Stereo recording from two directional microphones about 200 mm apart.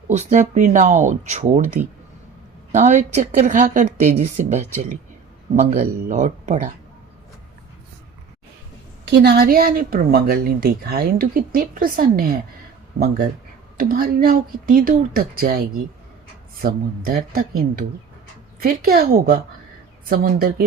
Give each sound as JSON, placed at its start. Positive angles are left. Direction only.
{"t": 0.1, "sound": "speech", "side_deg": -35}
{"t": 2.7, "sound": "speech", "side_deg": -35}
{"t": 6.1, "sound": "speech", "side_deg": -35}
{"t": 9.0, "sound": "speech", "side_deg": -55}
{"t": 13.7, "sound": "speech", "side_deg": -45}